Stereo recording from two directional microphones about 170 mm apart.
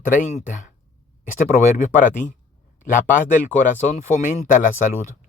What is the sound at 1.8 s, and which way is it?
Speech, 50° left (ahead or behind).